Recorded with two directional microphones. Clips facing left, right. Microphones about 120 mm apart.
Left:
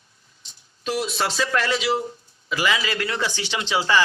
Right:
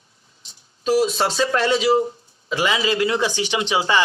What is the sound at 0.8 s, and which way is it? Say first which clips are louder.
Speech: right 6 dB; 40° right (ahead or behind).